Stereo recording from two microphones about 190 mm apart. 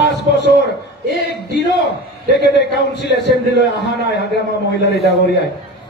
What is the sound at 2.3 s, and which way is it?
A man's voice, 65° left (ahead or behind).